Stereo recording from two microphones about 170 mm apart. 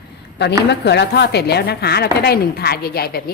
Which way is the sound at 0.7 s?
85° left.